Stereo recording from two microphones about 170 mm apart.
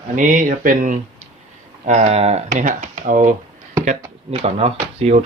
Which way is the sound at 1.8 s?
40° right (ahead or behind).